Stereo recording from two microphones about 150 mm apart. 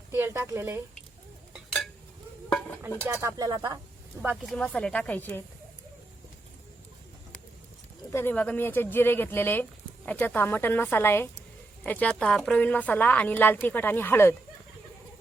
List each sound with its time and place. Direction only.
0.1 s a woman's voice: 15° right (ahead or behind)
1.5 s a sound: centre (ahead or behind)
3.1 s speech: 20° right (ahead or behind)
4.4 s a woman's voice: 5° left (ahead or behind)
8.1 s a woman's voice: 15° left (ahead or behind)